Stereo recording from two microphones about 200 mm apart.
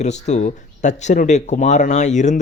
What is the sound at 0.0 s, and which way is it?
Speech, 35° left (ahead or behind).